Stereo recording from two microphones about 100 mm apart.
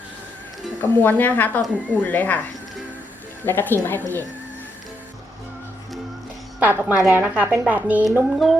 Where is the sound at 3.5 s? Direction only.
20° left (ahead or behind).